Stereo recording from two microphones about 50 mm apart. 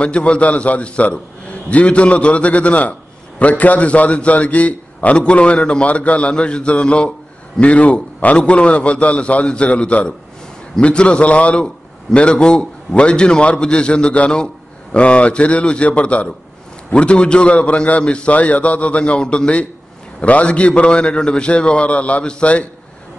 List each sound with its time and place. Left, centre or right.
0.0 s a man's voice: left
7.6 s a man's voice: left